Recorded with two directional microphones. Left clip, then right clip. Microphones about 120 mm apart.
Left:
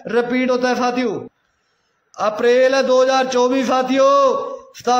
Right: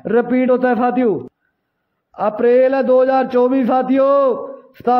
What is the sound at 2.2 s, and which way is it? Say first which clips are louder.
A man's voice: right 1 dB; 25° right (ahead or behind).